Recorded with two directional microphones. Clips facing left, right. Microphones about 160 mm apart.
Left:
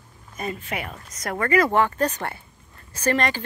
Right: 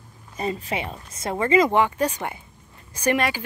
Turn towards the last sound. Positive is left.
turn(degrees=-10)  # may be behind; listen again after turning